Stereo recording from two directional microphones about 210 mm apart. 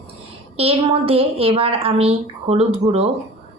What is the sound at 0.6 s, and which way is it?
A woman's voice, 30° right (ahead or behind).